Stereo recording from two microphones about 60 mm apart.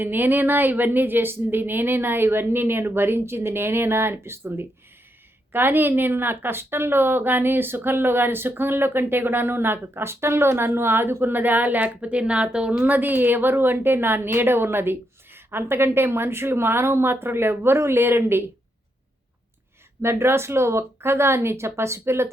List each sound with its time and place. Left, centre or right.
0.0 s a woman's voice: right
11.9 s a woman's voice: centre
12.8 s a woman's voice: right
20.0 s speech: right